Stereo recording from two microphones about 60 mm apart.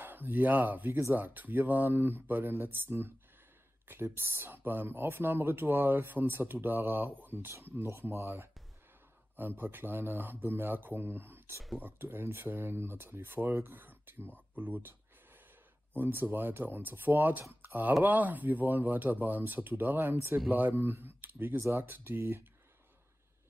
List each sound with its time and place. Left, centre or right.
0.0 s speech: right
14.5 s a sound: right
15.9 s speech: right
20.4 s speech: right